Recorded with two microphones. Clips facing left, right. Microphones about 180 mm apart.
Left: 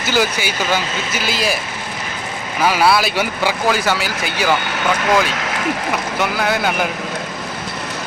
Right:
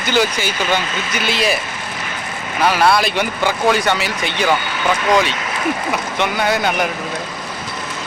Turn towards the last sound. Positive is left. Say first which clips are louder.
# right 1 dB
turn(degrees=0)  # may be behind; listen again after turning